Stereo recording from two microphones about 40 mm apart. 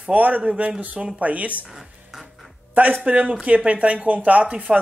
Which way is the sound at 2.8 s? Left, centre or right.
Right.